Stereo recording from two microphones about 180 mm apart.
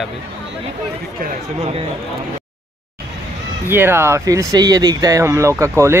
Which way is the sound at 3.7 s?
10° right (ahead or behind).